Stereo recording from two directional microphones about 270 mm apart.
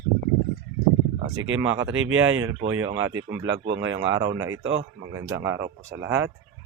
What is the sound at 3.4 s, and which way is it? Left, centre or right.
Speech, right.